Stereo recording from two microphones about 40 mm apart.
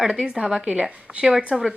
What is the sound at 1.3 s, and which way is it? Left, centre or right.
Speech, centre.